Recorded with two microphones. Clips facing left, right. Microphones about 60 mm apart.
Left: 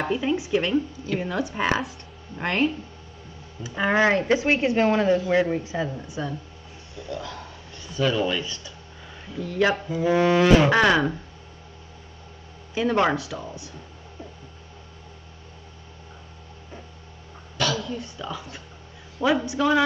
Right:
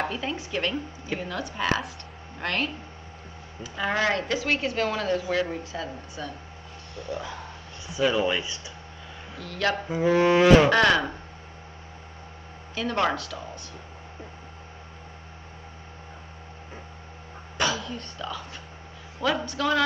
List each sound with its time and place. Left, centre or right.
0.1 s speech: centre
1.8 s speech: centre
2.4 s speech: centre
7.1 s speech: right
9.4 s speech: centre
10.0 s speech: centre
10.7 s speech: centre
12.7 s speech: centre
17.6 s a sound: right
17.8 s speech: centre